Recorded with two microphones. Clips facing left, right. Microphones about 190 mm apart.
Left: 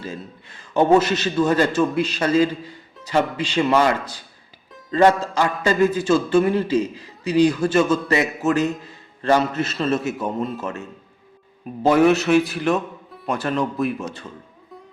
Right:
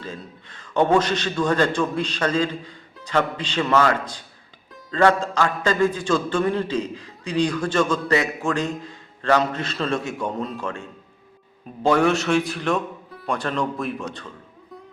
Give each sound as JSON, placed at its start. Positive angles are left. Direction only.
{"t": 0.0, "sound": "a man's voice", "side_deg": 10}
{"t": 4.9, "sound": "music", "side_deg": 20}
{"t": 5.2, "sound": "a man's voice", "side_deg": 10}